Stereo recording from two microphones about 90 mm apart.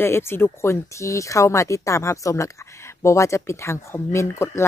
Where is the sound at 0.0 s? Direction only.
25° left (ahead or behind).